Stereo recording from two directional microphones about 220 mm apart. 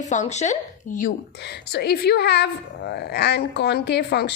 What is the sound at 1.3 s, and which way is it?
A woman's voice, 50° left (ahead or behind).